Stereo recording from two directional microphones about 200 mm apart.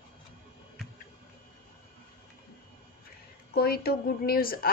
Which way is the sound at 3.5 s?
50° left (ahead or behind).